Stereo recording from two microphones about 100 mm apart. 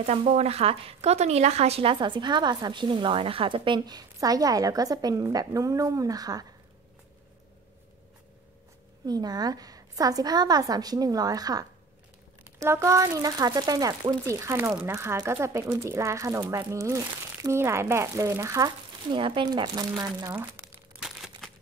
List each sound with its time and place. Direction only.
0.0 s speech: 90° right; by 6.4 s 40° right (ahead or behind)
9.0 s a woman's voice: 40° right (ahead or behind)
12.5 s a woman's voice: 30° right (ahead or behind)
19.0 s speech: 55° right (ahead or behind)
21.0 s crumpling: centre (ahead or behind)